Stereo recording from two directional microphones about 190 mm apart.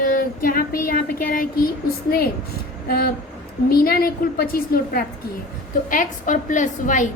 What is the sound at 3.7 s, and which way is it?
A woman's voice, 50° left (ahead or behind).